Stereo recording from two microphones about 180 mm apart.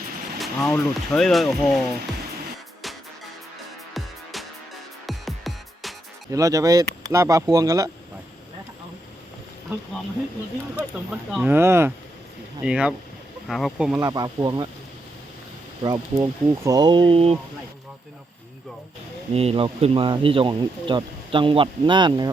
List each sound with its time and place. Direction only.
0.3 s a sound: centre (ahead or behind)
0.7 s speech: centre (ahead or behind)
3.9 s music: centre (ahead or behind)
6.3 s speech: 20° right (ahead or behind)
10.8 s speech: 5° right (ahead or behind)
14.0 s speech: 20° right (ahead or behind)
15.8 s speech: 20° right (ahead or behind)
19.3 s speech: 35° right (ahead or behind)